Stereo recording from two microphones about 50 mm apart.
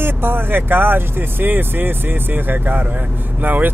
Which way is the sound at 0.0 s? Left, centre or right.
Right.